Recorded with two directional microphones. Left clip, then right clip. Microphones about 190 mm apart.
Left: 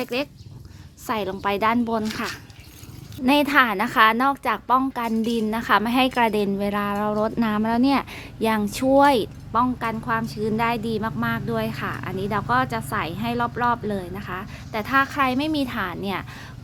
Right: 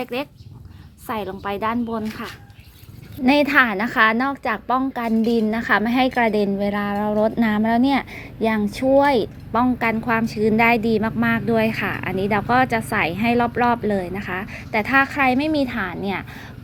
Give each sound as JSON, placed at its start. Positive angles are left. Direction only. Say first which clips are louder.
{"t": 0.0, "sound": "a woman's voice", "louder": "even", "side_deg": 15}
{"t": 3.2, "sound": "a woman's voice", "louder": "right 2 dB", "side_deg": 5}
{"t": 8.1, "sound": "a woman's voice", "louder": "right 1 dB", "side_deg": 15}
{"t": 9.5, "sound": "a woman's voice", "louder": "right 2 dB", "side_deg": -5}